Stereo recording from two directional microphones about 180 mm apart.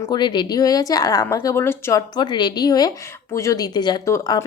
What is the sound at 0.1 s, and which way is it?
Speech, 25° left (ahead or behind).